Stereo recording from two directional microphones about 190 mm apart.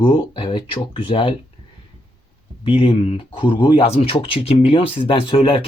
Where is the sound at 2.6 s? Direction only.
30° left (ahead or behind).